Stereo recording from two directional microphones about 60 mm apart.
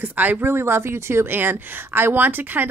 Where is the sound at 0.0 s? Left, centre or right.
Right.